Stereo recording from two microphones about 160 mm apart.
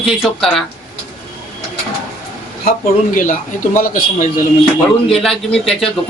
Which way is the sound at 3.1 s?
55° left (ahead or behind).